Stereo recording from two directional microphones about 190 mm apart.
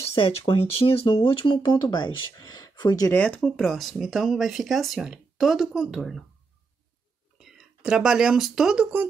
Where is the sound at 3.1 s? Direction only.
5° left (ahead or behind).